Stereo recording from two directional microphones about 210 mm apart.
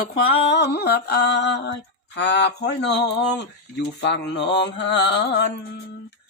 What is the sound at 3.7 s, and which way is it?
Music, 55° left (ahead or behind).